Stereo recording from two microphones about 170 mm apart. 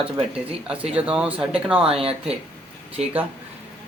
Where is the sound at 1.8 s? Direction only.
35° right (ahead or behind).